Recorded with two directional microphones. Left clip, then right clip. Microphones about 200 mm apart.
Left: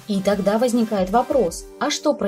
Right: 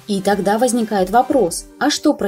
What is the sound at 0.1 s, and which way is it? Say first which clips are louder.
Speech: right 3 dB; 25° right (ahead or behind).